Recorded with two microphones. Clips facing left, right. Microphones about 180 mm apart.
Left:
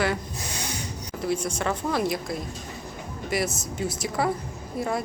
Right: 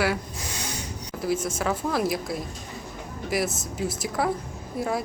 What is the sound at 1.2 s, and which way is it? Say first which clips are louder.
A woman's voice: right 1 dB; 5° right (ahead or behind).